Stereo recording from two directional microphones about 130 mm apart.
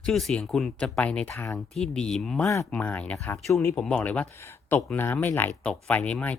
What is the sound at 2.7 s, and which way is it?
Speech, 10° left (ahead or behind).